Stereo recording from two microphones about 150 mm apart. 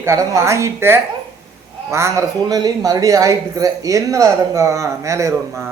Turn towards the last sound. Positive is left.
turn(degrees=-20)  # may be behind; listen again after turning